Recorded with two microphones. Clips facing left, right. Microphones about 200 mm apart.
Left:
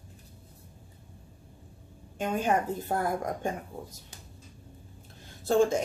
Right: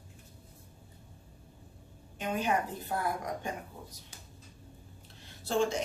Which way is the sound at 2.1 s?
45° left (ahead or behind).